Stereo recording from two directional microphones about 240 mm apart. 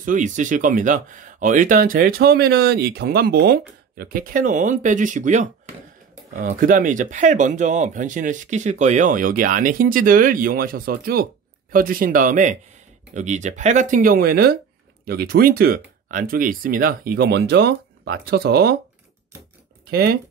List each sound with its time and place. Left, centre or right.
0.0 s speech: right
6.6 s speech: right
19.9 s speech: right